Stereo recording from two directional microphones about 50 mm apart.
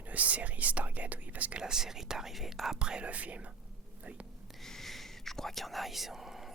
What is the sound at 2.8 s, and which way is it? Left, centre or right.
Speech, right.